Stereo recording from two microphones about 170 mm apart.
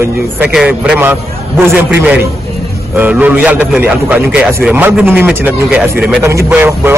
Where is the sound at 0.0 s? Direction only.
5° right (ahead or behind).